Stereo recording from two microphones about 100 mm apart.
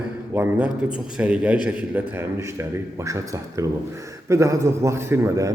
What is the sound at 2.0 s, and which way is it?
A man's voice, 25° right (ahead or behind).